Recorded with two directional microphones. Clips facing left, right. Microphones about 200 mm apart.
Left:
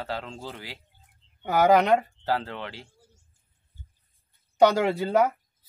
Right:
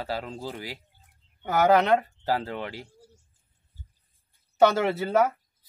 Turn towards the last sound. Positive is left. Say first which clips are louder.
# left 1 dB
turn(degrees=15)  # may be behind; listen again after turning